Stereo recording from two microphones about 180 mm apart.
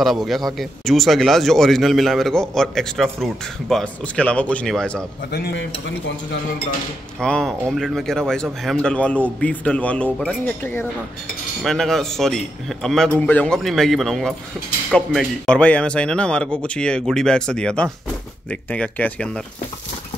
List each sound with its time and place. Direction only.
0.0 s a man's voice: centre (ahead or behind)
5.3 s speech: 70° left (ahead or behind)
7.2 s a man's voice: 5° left (ahead or behind)